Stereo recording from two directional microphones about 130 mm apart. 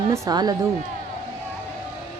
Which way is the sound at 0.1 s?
30° right (ahead or behind).